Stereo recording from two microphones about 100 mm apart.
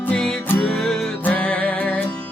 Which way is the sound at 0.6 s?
5° left (ahead or behind).